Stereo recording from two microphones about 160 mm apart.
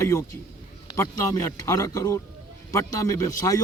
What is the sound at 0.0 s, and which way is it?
A man's voice, 20° left (ahead or behind).